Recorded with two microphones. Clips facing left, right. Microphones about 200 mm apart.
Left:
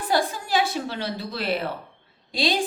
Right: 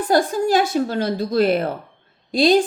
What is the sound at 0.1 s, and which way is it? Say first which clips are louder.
A woman's voice: right 7 dB; 45° right (ahead or behind).